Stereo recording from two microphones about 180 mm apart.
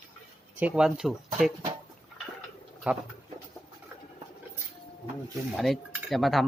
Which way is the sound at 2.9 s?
5° right (ahead or behind).